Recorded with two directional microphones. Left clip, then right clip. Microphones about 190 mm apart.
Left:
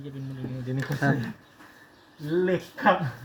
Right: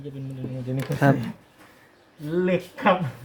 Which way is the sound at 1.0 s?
35° right (ahead or behind).